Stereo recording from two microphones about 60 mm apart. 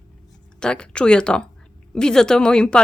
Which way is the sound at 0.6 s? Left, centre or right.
Centre.